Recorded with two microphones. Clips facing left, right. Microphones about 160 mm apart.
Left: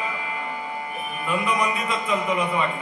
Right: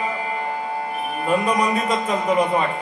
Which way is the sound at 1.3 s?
40° right (ahead or behind).